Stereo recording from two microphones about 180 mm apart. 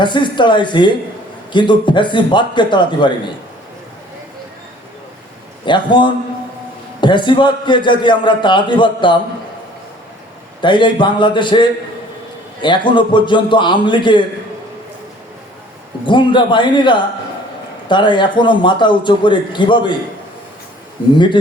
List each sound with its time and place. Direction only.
0.0 s a man's voice: 25° left (ahead or behind)
5.6 s a man's voice: 25° left (ahead or behind)
10.6 s a man's voice: 25° left (ahead or behind)
16.0 s a man's voice: 25° left (ahead or behind)